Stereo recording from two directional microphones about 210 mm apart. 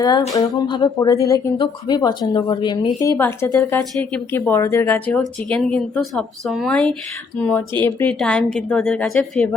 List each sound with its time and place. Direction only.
0.3 s a woman's voice: 20° left (ahead or behind); by 9.5 s centre (ahead or behind)